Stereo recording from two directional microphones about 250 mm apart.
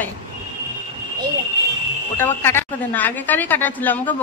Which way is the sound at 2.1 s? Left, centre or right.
Centre.